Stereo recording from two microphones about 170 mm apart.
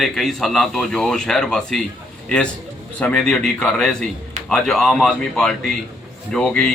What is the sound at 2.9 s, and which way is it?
A man's voice, 5° left (ahead or behind).